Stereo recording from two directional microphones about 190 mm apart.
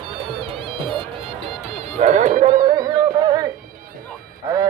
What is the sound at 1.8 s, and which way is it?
Speech, 40° right (ahead or behind).